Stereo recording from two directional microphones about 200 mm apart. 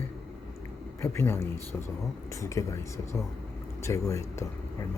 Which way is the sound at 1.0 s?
10° left (ahead or behind).